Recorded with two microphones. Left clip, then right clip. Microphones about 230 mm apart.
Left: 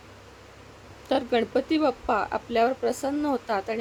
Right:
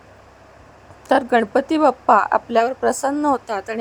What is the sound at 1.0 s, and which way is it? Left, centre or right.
A woman's voice, right.